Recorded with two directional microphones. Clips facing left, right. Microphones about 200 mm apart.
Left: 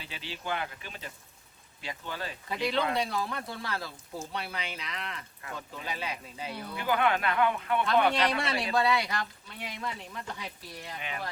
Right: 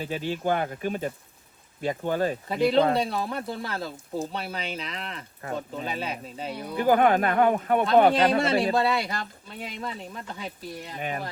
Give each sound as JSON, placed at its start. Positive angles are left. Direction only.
{"t": 0.0, "sound": "speech", "side_deg": -45}
{"t": 2.7, "sound": "speech", "side_deg": -35}
{"t": 6.7, "sound": "speech", "side_deg": -45}
{"t": 8.7, "sound": "speech", "side_deg": -25}
{"t": 10.9, "sound": "speech", "side_deg": -45}